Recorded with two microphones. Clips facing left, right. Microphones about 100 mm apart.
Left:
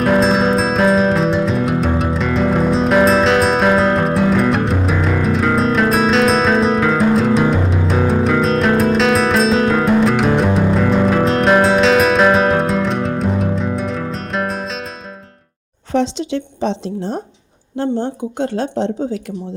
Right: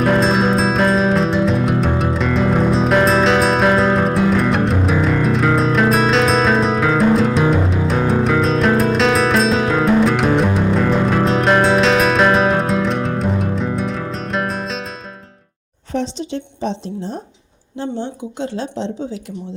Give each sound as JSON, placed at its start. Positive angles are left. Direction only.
{"t": 0.0, "sound": "music", "side_deg": 0}
{"t": 15.9, "sound": "a sound", "side_deg": 75}
{"t": 17.7, "sound": "speech", "side_deg": 55}